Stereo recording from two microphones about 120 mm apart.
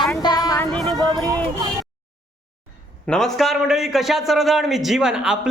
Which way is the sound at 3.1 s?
5° left (ahead or behind).